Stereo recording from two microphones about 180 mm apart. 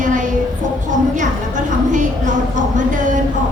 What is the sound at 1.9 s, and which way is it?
A man's voice, 45° right (ahead or behind).